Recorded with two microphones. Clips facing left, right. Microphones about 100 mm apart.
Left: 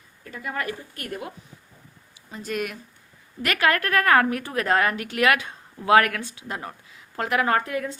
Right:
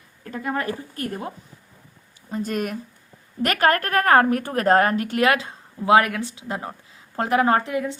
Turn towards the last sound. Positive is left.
turn(degrees=-20)  # may be behind; listen again after turning